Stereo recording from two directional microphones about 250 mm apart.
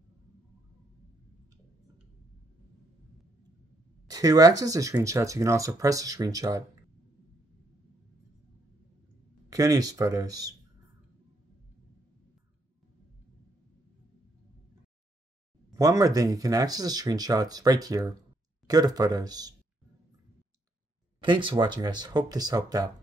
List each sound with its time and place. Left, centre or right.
4.1 s speech: centre
9.5 s speech: centre
15.7 s speech: centre
21.2 s speech: centre